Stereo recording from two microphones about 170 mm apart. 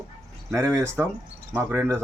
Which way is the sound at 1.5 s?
15° right (ahead or behind).